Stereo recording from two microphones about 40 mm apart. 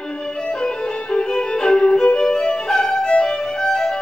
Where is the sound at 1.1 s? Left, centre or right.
Centre.